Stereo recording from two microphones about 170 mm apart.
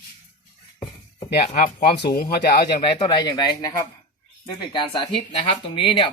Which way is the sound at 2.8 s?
30° left (ahead or behind).